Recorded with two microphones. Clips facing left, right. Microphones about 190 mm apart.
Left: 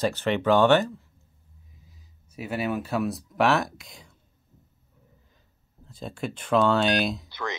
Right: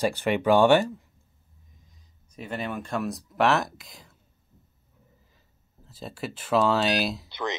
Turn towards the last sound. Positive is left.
turn(degrees=-20)  # may be behind; listen again after turning